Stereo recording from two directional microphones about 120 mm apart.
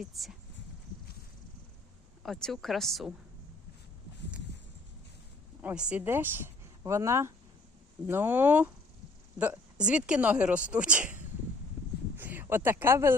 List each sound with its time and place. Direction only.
0.0 s a woman's voice: centre (ahead or behind)
2.2 s a woman's voice: 5° left (ahead or behind)
5.6 s a woman's voice: 10° right (ahead or behind)